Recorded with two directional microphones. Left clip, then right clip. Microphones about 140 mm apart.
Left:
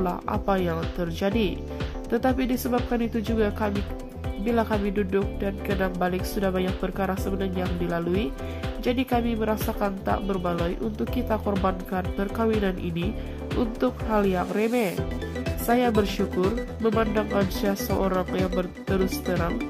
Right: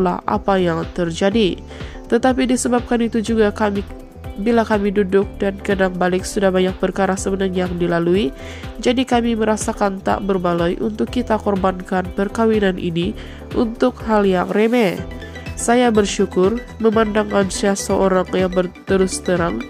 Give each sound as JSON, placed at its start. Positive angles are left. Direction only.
{"t": 0.0, "sound": "speech", "side_deg": -35}